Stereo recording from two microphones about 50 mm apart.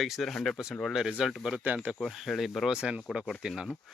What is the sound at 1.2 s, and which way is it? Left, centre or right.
Speech, centre.